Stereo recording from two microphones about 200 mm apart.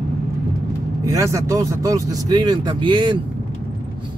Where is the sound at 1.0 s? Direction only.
15° right (ahead or behind).